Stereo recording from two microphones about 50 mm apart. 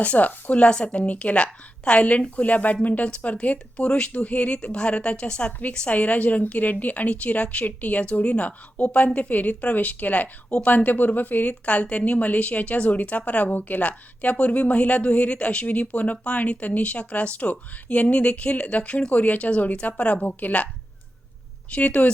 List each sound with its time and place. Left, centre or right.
0.0 s speech: left
0.7 s a woman's voice: centre
21.7 s a woman's voice: left